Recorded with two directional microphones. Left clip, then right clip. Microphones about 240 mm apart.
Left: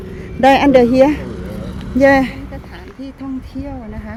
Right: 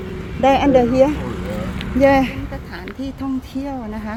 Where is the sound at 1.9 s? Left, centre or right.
Centre.